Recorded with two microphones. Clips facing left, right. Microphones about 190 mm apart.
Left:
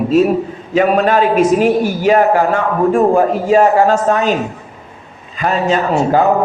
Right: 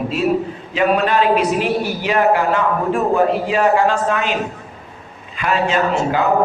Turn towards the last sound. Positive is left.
turn(degrees=40)  # may be behind; listen again after turning